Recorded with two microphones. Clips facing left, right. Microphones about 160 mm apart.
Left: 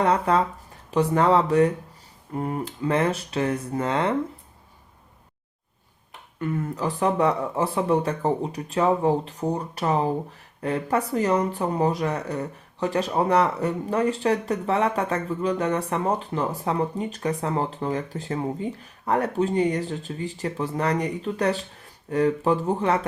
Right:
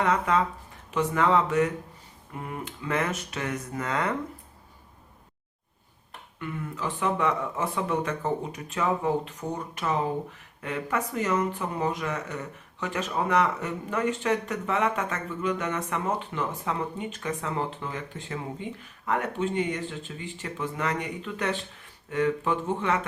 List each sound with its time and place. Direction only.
0.0 s speech: 35° left (ahead or behind)
6.4 s speech: 40° left (ahead or behind)